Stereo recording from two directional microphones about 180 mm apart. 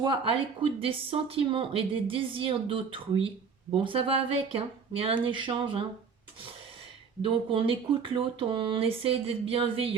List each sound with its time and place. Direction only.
0.0 s speech: 30° right (ahead or behind)
7.2 s speech: 30° right (ahead or behind)